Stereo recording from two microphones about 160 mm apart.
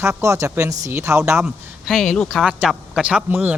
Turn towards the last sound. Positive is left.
turn(degrees=-10)  # may be behind; listen again after turning